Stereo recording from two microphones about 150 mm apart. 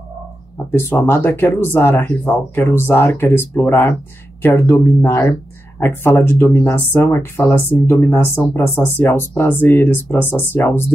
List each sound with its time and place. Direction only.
0.7 s speech: 15° left (ahead or behind)